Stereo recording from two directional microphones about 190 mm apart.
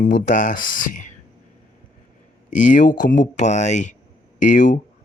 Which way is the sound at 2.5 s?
45° left (ahead or behind).